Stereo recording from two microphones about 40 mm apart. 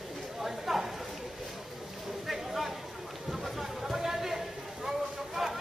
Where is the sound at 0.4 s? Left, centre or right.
Centre.